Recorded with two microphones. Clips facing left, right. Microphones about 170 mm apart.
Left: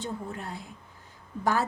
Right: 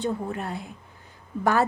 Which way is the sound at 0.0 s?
65° right (ahead or behind).